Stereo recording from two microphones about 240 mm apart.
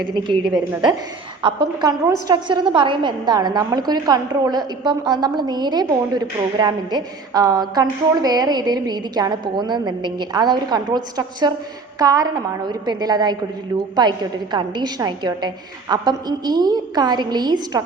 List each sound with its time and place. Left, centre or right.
1.4 s a woman's voice: centre